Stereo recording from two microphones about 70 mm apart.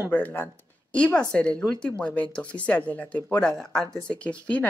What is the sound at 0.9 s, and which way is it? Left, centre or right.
Speech, centre.